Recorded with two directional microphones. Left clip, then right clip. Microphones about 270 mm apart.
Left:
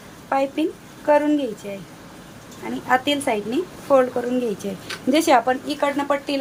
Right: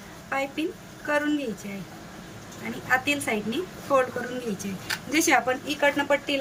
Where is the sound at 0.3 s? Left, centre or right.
Centre.